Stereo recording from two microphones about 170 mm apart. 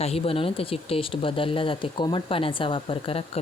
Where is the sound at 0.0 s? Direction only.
35° left (ahead or behind).